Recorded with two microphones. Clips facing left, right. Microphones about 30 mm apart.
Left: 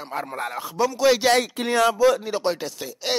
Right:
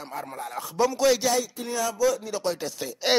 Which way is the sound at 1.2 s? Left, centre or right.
Left.